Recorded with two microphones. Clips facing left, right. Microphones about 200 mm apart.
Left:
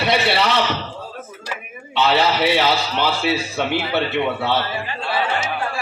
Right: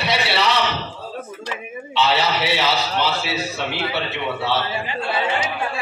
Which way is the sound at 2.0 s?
55° left (ahead or behind).